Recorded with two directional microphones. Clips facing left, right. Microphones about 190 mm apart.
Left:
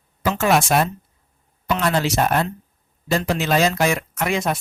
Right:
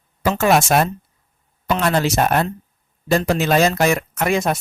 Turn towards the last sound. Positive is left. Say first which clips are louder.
# right 3 dB
turn(degrees=-45)  # may be behind; listen again after turning